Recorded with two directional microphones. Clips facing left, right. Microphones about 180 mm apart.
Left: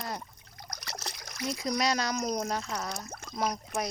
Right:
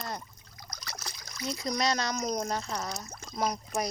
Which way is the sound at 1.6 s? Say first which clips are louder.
Even; 5° left (ahead or behind).